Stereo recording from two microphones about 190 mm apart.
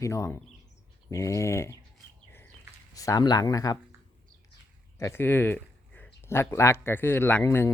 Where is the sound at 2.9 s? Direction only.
20° left (ahead or behind).